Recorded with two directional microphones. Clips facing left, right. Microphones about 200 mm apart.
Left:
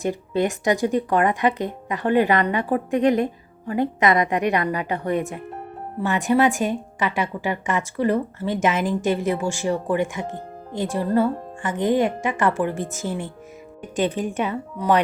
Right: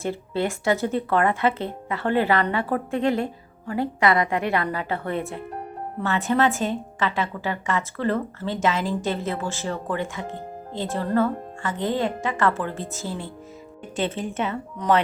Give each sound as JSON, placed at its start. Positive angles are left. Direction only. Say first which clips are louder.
{"t": 0.0, "sound": "a woman's voice", "louder": "left 3 dB", "side_deg": 15}